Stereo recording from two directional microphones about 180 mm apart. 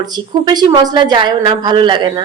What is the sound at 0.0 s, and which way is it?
A woman's voice, 20° right (ahead or behind).